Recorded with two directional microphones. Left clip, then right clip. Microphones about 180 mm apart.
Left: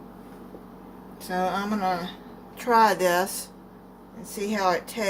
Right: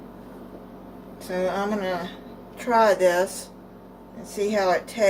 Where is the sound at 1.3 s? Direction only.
50° left (ahead or behind).